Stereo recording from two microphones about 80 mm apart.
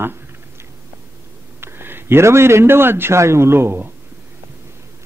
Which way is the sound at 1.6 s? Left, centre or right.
Right.